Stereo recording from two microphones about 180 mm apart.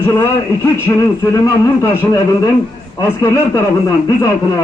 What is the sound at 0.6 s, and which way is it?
A man's voice, 15° left (ahead or behind).